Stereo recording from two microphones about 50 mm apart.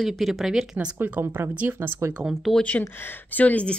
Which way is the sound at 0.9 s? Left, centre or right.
Right.